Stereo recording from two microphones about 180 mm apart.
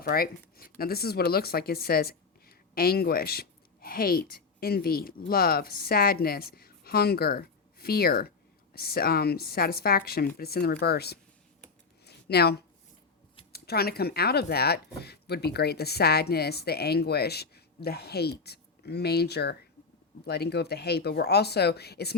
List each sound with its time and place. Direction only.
0.0 s speech: 55° left (ahead or behind)
12.0 s a sound: 65° left (ahead or behind)
13.5 s speech: 60° left (ahead or behind)